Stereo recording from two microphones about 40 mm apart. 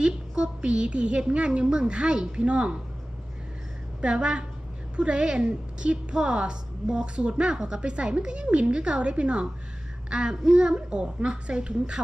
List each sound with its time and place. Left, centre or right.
0.0 s a sound: centre
0.6 s a woman's voice: right
4.0 s a woman's voice: right